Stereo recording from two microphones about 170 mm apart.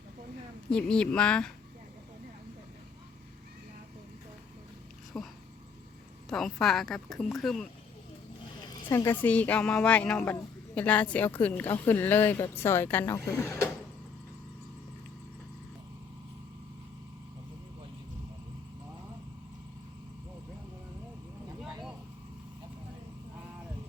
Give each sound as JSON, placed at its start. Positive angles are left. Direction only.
{"t": 0.7, "sound": "a woman's voice", "side_deg": 5}
{"t": 5.1, "sound": "a woman's voice", "side_deg": 5}
{"t": 8.9, "sound": "a woman's voice", "side_deg": 15}